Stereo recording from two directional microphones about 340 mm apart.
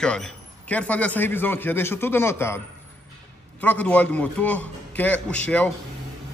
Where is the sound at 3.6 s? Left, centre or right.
Centre.